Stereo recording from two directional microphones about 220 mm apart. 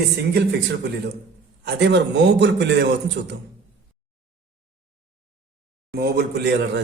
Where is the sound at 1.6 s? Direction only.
50° right (ahead or behind).